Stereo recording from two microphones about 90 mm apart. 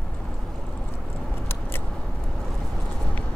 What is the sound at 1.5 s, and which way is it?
Vehicle, 25° left (ahead or behind).